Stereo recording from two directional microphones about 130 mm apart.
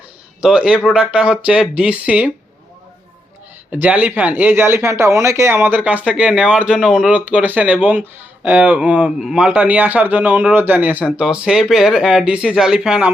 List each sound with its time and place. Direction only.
0.4 s a man's voice: 5° right (ahead or behind)
3.7 s a man's voice: 10° right (ahead or behind)